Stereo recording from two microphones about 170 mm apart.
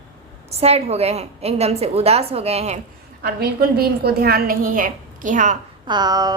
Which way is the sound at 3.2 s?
65° right (ahead or behind).